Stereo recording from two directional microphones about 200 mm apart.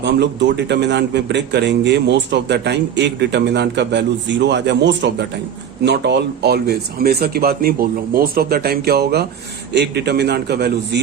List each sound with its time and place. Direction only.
0.0 s a man's voice: 60° right (ahead or behind)